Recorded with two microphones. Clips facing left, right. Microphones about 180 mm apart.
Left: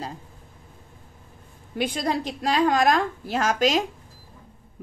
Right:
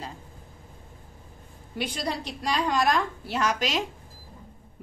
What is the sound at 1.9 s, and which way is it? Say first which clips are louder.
A woman's voice: left 6 dB; 50° left (ahead or behind).